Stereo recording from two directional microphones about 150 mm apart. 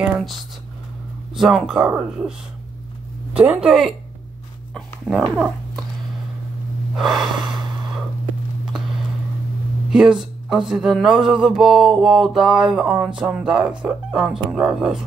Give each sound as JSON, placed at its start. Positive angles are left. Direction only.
{"t": 0.0, "sound": "speech", "side_deg": -5}
{"t": 3.3, "sound": "speech", "side_deg": -10}
{"t": 7.2, "sound": "snort", "side_deg": -30}
{"t": 9.9, "sound": "speech", "side_deg": -5}